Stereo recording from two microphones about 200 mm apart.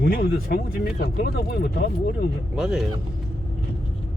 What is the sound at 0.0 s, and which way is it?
Speech, 50° left (ahead or behind).